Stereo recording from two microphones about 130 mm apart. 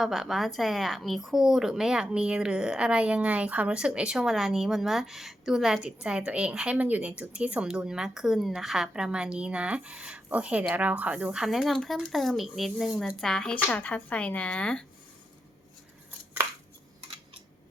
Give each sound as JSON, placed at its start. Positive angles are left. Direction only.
{"t": 0.0, "sound": "a woman's voice", "side_deg": 0}